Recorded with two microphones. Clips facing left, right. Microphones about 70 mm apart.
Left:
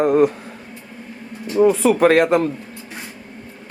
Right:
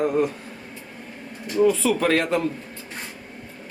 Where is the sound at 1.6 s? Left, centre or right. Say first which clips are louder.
Left 6 dB; left.